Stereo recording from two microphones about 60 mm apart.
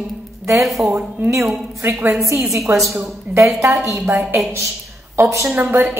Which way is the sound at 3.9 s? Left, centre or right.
Right.